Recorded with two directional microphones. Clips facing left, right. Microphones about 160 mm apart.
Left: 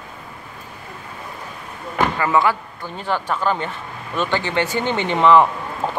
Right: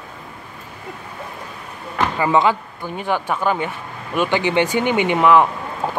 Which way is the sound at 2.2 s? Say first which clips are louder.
Right 4 dB; 20° right (ahead or behind).